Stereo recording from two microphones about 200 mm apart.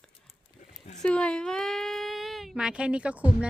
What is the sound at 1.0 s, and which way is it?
Speech, 5° left (ahead or behind).